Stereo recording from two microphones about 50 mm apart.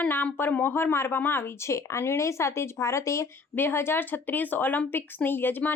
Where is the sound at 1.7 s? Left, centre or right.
Left.